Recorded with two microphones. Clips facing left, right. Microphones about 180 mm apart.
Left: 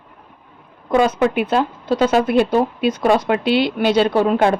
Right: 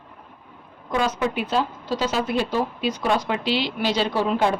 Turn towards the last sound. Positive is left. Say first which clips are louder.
# left 6 dB
turn(degrees=55)  # may be behind; listen again after turning